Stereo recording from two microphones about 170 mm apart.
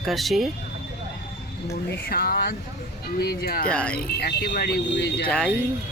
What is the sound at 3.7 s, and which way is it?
Speech, 5° left (ahead or behind).